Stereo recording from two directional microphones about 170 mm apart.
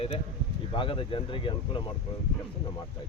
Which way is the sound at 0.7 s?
30° left (ahead or behind).